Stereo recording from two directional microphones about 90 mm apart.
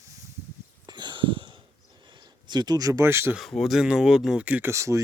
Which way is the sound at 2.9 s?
30° right (ahead or behind).